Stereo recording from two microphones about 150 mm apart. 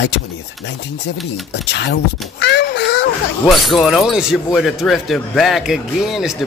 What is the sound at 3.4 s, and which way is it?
Speech, 5° right (ahead or behind).